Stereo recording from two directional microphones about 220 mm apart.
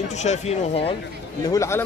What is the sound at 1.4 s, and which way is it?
Speech, 15° left (ahead or behind).